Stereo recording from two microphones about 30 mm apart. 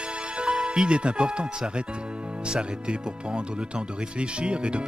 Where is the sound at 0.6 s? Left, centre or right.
Right.